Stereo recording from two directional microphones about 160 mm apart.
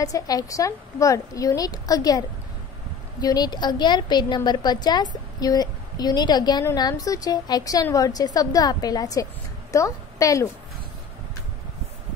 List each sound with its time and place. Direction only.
0.0 s a woman's voice: 20° left (ahead or behind)